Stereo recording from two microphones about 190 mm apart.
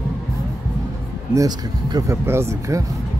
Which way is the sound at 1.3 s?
20° right (ahead or behind).